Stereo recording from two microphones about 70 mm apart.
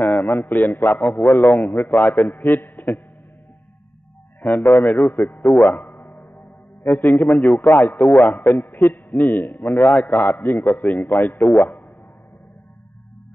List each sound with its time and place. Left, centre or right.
0.0 s a man's voice: left
1.4 s a man's voice: centre
1.7 s a man's voice: left
4.4 s a man's voice: left